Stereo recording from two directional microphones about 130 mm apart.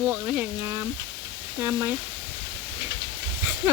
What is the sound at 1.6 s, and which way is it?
Speech, 25° right (ahead or behind).